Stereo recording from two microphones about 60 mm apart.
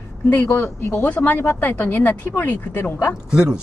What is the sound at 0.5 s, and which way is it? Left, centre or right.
Speech, left.